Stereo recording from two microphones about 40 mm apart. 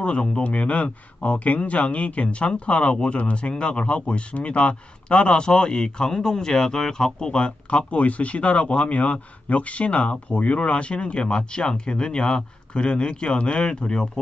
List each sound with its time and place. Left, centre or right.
0.0 s speech: left